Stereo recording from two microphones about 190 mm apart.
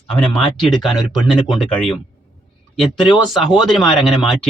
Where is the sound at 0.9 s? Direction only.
25° left (ahead or behind).